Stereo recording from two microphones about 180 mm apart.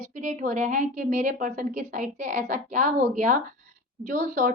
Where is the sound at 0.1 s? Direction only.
45° right (ahead or behind).